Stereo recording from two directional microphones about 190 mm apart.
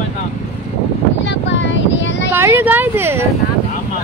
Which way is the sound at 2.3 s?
10° right (ahead or behind).